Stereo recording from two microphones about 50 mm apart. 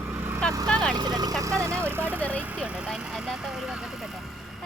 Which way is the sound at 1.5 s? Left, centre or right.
Right.